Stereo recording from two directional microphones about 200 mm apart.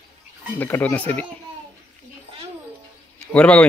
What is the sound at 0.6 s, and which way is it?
Speech, 10° left (ahead or behind).